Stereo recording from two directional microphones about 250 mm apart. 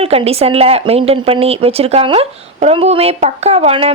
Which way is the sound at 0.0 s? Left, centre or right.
Right.